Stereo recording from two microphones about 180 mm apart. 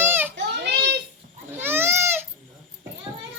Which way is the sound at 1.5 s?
10° right (ahead or behind).